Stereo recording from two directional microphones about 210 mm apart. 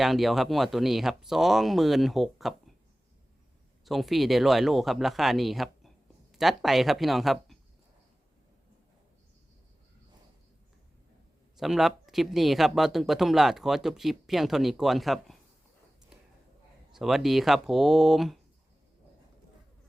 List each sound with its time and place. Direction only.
0.0 s speech: centre (ahead or behind)
3.8 s speech: centre (ahead or behind)
11.5 s speech: centre (ahead or behind)
16.9 s speech: centre (ahead or behind)